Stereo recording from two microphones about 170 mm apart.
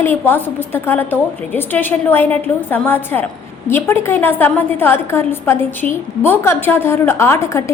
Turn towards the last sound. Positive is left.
turn(degrees=15)  # may be behind; listen again after turning